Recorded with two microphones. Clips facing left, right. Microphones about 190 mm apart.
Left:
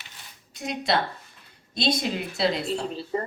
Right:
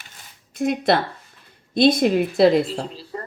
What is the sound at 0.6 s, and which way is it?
A woman's voice, 55° right (ahead or behind).